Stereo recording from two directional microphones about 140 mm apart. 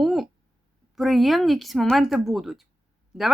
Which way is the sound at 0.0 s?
Centre (ahead or behind).